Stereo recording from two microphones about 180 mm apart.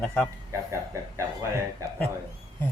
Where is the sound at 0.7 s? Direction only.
15° right (ahead or behind).